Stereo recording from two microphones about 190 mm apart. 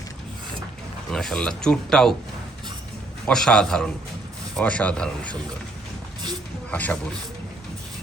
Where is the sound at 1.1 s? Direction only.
5° left (ahead or behind).